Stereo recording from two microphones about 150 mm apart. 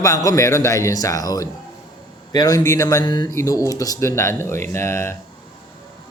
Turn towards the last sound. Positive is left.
turn(degrees=15)  # may be behind; listen again after turning